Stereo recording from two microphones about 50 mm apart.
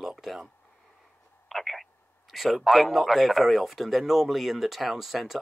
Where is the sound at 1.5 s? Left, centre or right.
Centre.